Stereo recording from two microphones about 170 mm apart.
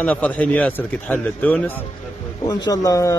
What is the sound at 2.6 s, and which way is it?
Speech, 20° left (ahead or behind).